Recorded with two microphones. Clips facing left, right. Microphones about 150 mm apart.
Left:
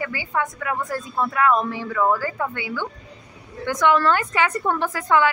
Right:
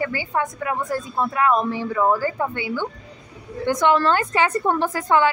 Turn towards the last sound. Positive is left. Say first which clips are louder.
# right 1 dB
turn(degrees=-30)  # may be behind; listen again after turning